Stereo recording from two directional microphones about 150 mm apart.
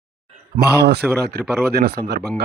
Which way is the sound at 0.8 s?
90° right.